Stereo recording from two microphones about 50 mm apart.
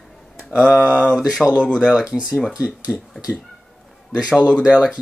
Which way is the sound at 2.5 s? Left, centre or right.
Right.